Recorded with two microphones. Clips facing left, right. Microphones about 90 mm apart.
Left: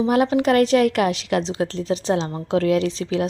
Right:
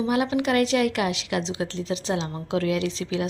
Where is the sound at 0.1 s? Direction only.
40° left (ahead or behind).